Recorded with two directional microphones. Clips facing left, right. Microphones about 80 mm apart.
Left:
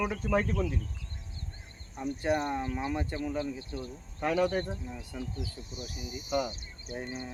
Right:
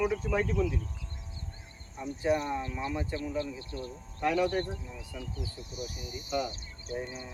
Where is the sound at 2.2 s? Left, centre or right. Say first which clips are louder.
Right 1 dB; left.